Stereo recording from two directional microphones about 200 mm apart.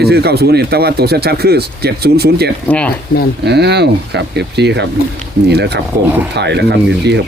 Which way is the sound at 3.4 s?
55° right (ahead or behind).